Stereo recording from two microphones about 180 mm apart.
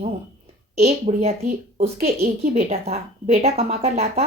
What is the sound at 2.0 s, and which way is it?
A woman's voice, 50° right (ahead or behind).